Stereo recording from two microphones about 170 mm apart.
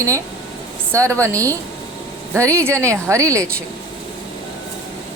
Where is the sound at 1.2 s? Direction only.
20° right (ahead or behind).